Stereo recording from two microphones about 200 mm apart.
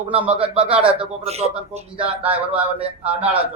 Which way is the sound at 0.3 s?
30° right (ahead or behind).